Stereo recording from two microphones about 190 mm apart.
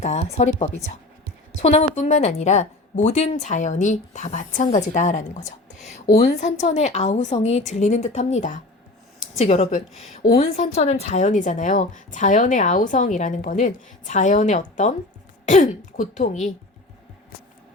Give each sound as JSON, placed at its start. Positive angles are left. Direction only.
{"t": 0.0, "sound": "speech", "side_deg": 35}